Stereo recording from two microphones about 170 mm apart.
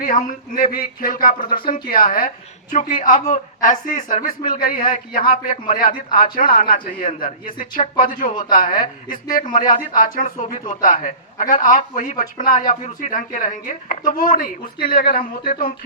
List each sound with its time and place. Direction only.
0.0 s a woman's voice: 50° left (ahead or behind)